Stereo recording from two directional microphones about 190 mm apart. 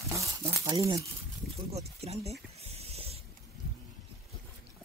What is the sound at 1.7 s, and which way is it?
Snake, 35° right (ahead or behind).